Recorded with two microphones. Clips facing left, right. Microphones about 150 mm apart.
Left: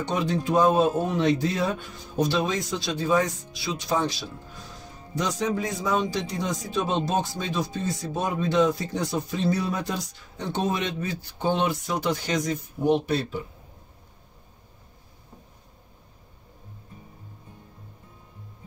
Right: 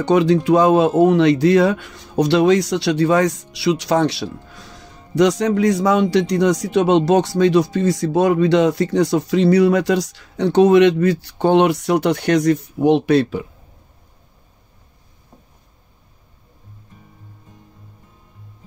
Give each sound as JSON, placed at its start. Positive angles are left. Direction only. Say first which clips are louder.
{"t": 0.0, "sound": "speech", "louder": "right 12 dB", "side_deg": -90}